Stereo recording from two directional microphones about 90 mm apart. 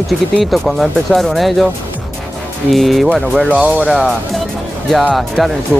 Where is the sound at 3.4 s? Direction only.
15° right (ahead or behind).